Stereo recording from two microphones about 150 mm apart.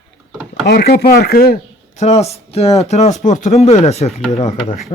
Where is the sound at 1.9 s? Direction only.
45° left (ahead or behind).